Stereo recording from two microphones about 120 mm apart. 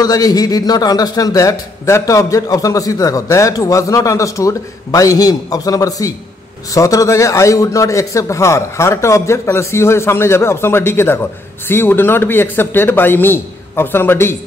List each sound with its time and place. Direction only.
0.0 s a man's voice: 30° left (ahead or behind)